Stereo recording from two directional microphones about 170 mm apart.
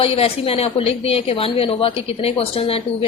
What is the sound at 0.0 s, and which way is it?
A woman's voice, 35° left (ahead or behind).